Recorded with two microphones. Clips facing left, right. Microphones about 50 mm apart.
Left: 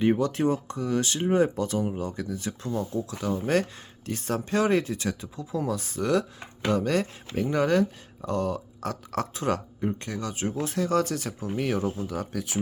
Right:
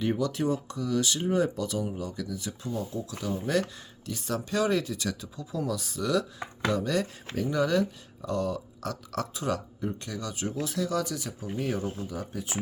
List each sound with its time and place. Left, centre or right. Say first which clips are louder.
0.0 s speech: left 4 dB; left
12.0 s speech: left 4 dB; left